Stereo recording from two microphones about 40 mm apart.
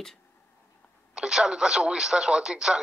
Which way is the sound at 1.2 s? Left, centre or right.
Centre.